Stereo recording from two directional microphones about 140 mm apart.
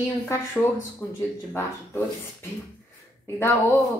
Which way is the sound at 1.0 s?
15° left (ahead or behind).